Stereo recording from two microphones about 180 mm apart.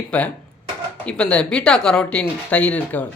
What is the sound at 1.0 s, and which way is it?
Speech, 5° left (ahead or behind).